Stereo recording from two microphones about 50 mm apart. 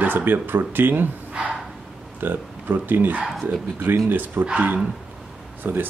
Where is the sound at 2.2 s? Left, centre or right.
Right.